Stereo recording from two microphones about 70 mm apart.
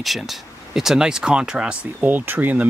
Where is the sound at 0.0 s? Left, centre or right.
Centre.